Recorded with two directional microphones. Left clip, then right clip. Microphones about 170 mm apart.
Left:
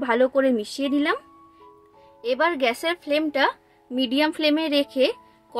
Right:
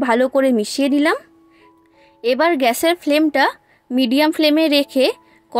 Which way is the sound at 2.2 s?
45° right (ahead or behind).